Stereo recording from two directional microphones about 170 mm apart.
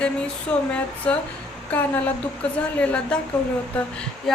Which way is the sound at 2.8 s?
5° left (ahead or behind).